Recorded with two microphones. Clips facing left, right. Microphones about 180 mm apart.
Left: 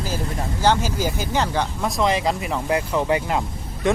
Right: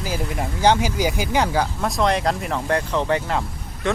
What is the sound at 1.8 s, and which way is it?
Speech, centre (ahead or behind).